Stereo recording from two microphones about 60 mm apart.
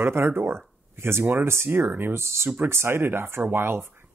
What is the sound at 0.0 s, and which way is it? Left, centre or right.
Speech, right.